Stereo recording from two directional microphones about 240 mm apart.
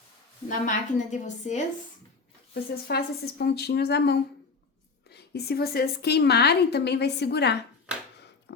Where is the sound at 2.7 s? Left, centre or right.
Left.